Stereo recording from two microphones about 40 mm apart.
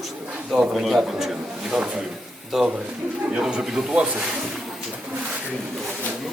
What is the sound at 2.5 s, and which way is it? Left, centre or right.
Speech, centre.